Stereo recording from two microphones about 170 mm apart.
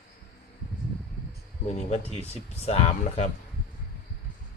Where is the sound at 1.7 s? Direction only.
40° left (ahead or behind).